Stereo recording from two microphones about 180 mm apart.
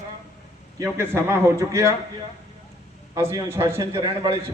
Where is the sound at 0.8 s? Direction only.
15° right (ahead or behind).